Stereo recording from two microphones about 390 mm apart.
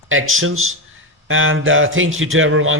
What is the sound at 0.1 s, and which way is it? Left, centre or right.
Speech, right.